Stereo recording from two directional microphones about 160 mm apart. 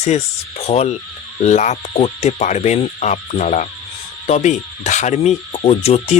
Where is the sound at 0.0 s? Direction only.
45° left (ahead or behind).